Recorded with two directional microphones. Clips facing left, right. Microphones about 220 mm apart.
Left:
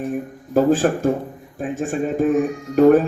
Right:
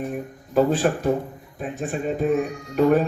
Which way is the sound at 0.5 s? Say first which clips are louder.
Left 3 dB; 45° left (ahead or behind).